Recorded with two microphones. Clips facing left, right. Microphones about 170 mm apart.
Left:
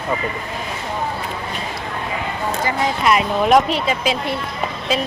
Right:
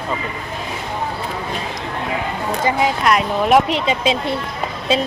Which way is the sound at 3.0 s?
Centre (ahead or behind).